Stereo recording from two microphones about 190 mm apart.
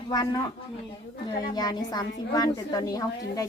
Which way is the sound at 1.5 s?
20° left (ahead or behind).